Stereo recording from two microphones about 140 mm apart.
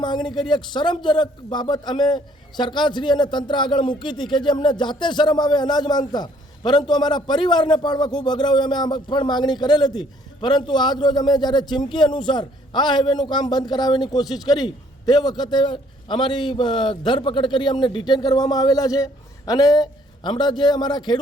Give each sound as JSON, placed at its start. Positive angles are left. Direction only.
{"t": 0.0, "sound": "a man's voice", "side_deg": 35}